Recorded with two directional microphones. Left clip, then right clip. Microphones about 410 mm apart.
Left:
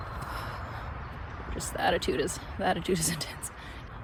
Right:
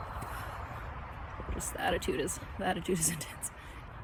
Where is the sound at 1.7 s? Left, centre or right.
Centre.